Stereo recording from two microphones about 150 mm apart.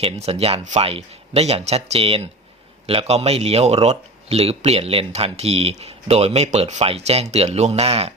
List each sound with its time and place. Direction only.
0.0 s speech: 40° right (ahead or behind)